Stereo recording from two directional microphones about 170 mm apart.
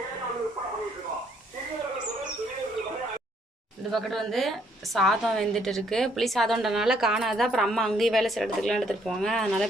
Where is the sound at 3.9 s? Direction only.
Centre (ahead or behind).